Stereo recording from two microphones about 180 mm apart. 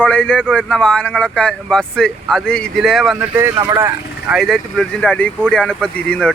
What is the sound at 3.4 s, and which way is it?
Speech, 15° right (ahead or behind).